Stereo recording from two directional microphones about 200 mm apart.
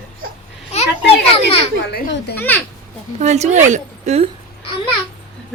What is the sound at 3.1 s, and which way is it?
A woman's voice, 35° right (ahead or behind).